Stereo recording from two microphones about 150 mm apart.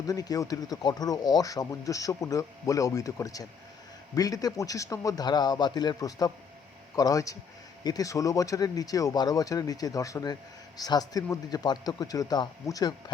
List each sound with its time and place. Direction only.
0.1 s speech: 25° left (ahead or behind)